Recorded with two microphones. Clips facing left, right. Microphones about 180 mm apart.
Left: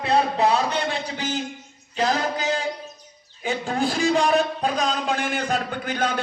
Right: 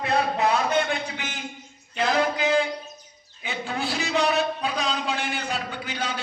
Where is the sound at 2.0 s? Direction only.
40° left (ahead or behind).